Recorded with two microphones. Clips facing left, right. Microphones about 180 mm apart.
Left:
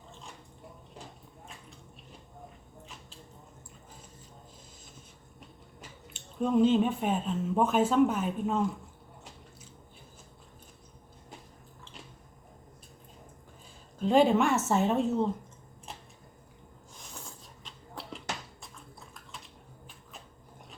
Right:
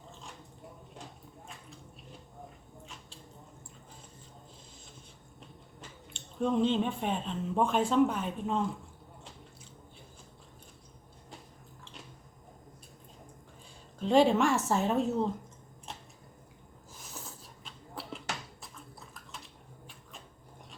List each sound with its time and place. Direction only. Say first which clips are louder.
6.1 s speech: left 3 dB; 5° left (ahead or behind)
14.3 s speech: left 1 dB; centre (ahead or behind)
16.9 s a sound: right 1 dB; 5° right (ahead or behind)